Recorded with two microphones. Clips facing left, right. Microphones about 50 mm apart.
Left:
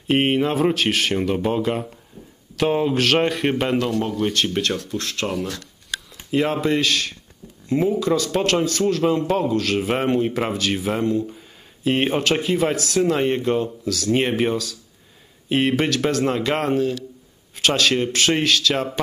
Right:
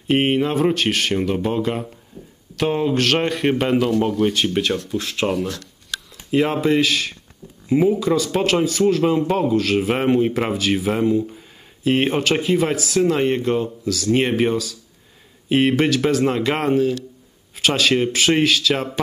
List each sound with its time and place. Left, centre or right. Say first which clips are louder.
0.0 s a man's voice: right 1 dB; centre